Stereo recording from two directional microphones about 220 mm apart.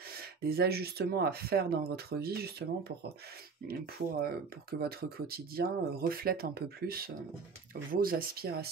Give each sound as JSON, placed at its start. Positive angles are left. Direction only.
{"t": 0.2, "sound": "speech", "side_deg": -45}